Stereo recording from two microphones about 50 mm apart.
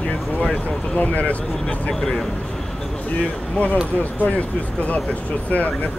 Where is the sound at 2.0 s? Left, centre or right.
Centre.